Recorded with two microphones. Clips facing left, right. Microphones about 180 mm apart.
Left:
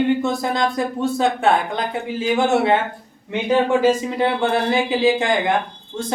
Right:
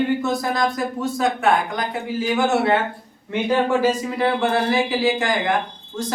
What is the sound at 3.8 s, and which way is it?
Speech, 25° left (ahead or behind).